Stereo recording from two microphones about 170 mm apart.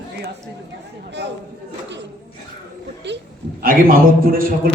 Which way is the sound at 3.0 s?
90° right.